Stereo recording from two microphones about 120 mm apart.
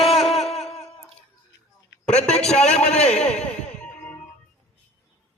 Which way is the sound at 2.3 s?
5° left (ahead or behind).